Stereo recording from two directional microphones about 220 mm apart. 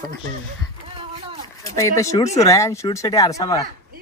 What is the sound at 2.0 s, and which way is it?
Speech, 15° left (ahead or behind).